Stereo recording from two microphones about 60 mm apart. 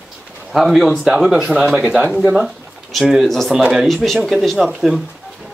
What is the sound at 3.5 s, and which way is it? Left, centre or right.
Speech, centre.